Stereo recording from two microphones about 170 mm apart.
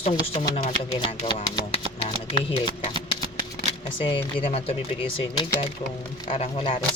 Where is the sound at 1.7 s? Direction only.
35° left (ahead or behind).